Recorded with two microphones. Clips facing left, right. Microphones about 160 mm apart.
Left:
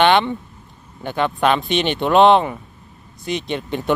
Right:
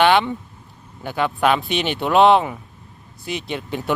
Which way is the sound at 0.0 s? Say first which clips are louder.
Left 1 dB; 5° right (ahead or behind).